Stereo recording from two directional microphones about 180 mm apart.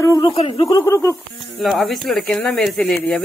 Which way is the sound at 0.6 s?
15° left (ahead or behind).